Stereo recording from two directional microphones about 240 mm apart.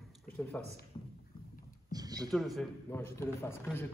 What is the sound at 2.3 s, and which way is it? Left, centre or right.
Speech, centre.